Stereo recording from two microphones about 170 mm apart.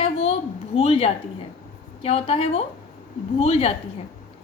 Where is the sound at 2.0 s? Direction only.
35° left (ahead or behind).